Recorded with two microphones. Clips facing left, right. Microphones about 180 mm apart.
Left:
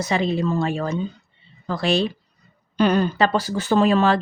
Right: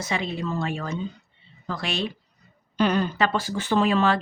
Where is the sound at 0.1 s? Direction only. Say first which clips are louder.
Left 6 dB; 35° left (ahead or behind).